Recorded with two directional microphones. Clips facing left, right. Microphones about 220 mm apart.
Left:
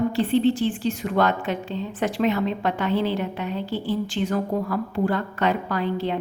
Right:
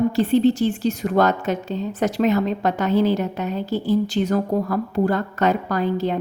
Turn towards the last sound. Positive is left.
turn(degrees=-45)  # may be behind; listen again after turning